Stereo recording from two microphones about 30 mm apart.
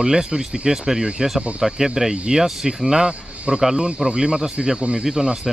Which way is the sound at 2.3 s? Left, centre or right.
Right.